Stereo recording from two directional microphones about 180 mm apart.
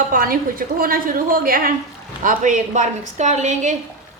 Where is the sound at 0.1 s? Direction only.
50° right (ahead or behind).